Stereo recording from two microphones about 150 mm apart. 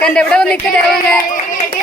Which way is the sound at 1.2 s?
60° left (ahead or behind).